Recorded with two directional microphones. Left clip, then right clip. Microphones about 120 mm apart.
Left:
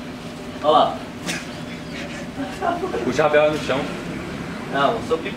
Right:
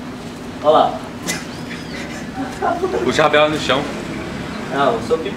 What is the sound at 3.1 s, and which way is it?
Speech, 50° right (ahead or behind).